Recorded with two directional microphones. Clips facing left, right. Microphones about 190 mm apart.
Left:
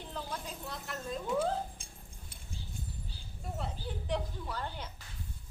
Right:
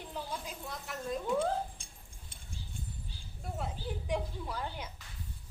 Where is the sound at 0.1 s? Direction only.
10° right (ahead or behind).